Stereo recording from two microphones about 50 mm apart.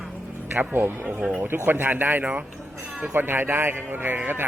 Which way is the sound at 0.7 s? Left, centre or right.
Right.